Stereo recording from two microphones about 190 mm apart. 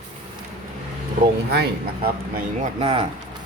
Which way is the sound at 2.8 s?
30° right (ahead or behind).